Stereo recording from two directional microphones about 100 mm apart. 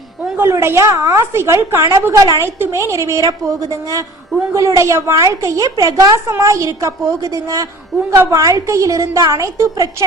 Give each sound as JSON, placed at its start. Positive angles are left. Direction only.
{"t": 0.3, "sound": "a woman's voice", "side_deg": -25}